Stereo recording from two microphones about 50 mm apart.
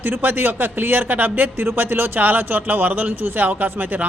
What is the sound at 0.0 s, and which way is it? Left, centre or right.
Speech, right.